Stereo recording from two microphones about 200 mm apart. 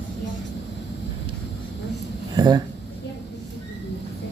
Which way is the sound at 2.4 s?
20° right (ahead or behind).